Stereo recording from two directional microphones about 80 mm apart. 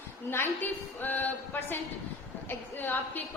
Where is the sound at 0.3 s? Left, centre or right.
Left.